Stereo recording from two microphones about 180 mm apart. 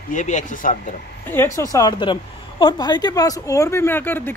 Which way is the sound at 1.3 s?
15° left (ahead or behind).